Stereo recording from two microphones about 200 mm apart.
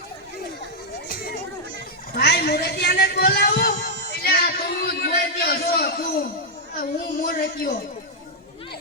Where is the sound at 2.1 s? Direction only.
50° left (ahead or behind).